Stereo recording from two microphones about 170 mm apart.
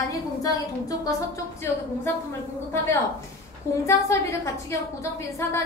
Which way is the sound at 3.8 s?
15° left (ahead or behind).